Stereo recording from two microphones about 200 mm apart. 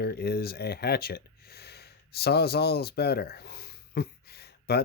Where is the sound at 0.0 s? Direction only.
50° left (ahead or behind).